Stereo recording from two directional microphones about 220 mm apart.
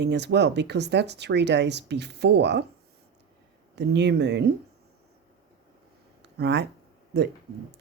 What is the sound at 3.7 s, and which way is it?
Speech, 50° right (ahead or behind).